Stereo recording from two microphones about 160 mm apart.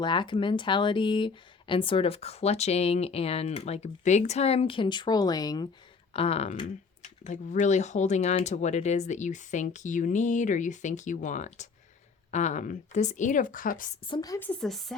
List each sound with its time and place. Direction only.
0.0 s speech: 30° left (ahead or behind)
6.1 s speech: 40° left (ahead or behind); by 13.9 s 60° left (ahead or behind)
14.1 s a woman's voice: 25° left (ahead or behind)
14.3 s speech: 10° left (ahead or behind)